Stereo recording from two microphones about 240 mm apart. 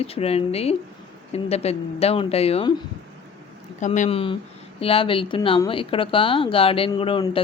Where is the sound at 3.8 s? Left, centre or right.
Left.